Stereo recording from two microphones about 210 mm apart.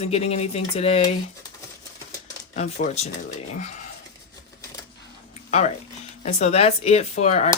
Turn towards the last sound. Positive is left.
turn(degrees=35)  # may be behind; listen again after turning